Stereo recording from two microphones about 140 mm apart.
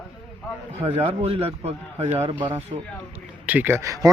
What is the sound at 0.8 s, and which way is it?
A man's voice, 45° right (ahead or behind).